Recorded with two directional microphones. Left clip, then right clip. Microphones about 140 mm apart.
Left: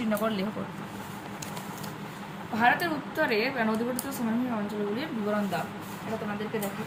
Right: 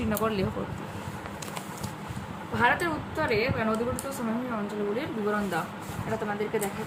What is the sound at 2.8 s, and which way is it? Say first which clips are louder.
Speech: left 1 dB; 10° right (ahead or behind).